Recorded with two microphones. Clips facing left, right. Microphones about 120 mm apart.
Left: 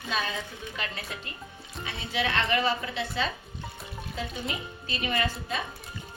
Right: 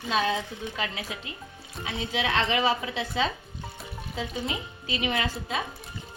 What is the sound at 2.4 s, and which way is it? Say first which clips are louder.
Speech: right 2 dB; 90° right.